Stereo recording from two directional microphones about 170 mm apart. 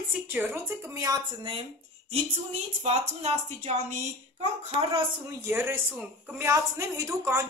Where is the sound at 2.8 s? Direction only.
40° right (ahead or behind).